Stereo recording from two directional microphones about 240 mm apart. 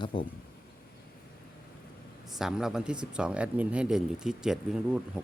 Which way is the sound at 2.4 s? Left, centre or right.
Centre.